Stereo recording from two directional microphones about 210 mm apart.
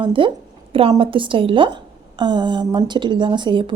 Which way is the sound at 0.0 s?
25° right (ahead or behind).